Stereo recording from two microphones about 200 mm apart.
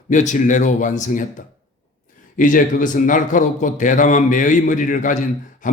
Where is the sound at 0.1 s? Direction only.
40° left (ahead or behind).